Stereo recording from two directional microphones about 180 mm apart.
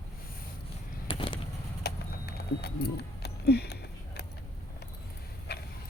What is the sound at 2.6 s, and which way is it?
Keys jangling, 60° left (ahead or behind).